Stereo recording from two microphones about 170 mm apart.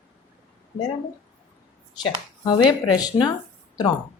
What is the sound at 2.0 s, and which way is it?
A woman's voice, 25° left (ahead or behind).